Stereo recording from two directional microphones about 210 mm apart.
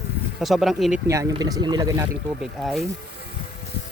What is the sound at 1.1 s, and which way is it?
Speech, 15° right (ahead or behind).